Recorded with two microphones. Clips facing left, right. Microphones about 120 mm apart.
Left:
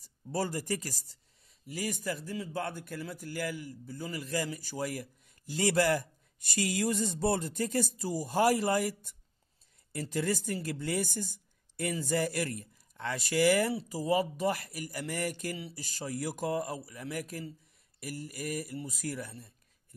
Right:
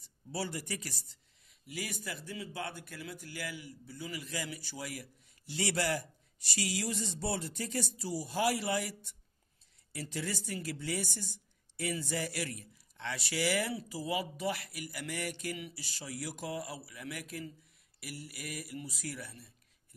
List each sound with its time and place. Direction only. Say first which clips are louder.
0.0 s speech: left 5 dB; 45° left (ahead or behind)